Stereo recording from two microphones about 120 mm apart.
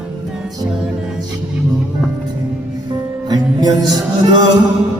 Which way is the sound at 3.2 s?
35° right (ahead or behind).